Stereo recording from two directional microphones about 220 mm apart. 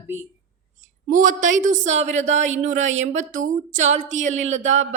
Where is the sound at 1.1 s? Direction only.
35° right (ahead or behind).